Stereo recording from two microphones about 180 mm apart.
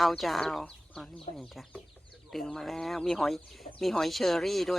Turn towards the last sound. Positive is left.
turn(degrees=0)  # may be behind; listen again after turning